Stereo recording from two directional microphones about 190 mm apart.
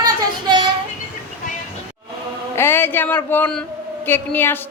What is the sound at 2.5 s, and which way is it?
A woman's voice, 10° left (ahead or behind).